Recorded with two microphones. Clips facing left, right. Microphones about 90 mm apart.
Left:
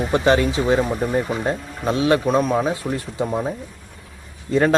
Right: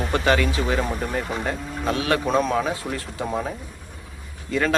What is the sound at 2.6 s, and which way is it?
Speech, 20° left (ahead or behind).